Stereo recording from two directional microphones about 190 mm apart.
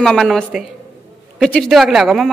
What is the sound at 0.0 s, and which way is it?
A woman's voice, centre (ahead or behind).